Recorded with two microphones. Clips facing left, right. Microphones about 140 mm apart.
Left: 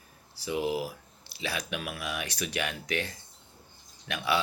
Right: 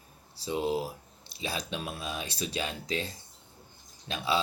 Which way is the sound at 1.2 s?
75° left (ahead or behind).